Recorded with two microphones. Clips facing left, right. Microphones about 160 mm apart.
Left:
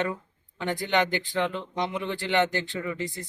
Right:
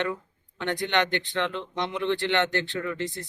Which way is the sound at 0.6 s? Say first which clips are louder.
Even; 5° left (ahead or behind).